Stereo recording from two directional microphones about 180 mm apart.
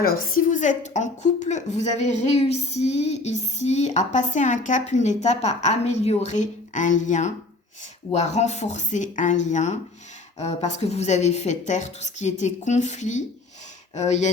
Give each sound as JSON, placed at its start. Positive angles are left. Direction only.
{"t": 0.0, "sound": "a woman's voice", "side_deg": 55}